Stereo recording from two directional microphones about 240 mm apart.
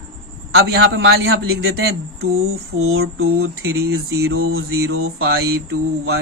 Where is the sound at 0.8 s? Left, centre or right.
Right.